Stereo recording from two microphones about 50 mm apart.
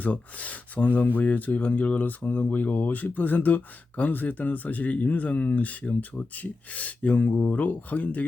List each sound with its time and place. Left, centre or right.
0.0 s speech: left